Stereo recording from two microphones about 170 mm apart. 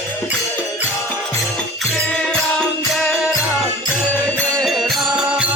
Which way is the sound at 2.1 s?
5° left (ahead or behind).